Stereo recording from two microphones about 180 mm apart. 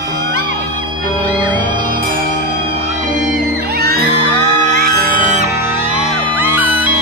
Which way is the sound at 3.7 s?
60° right (ahead or behind).